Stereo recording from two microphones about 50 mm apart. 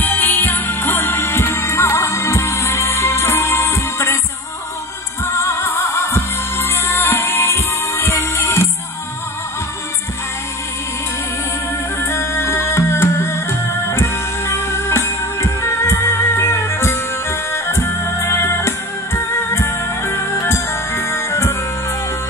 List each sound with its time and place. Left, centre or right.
0.0 s music: left
5.2 s music: left
12.0 s music: left
12.6 s music: left
18.2 s music: left
18.5 s music: left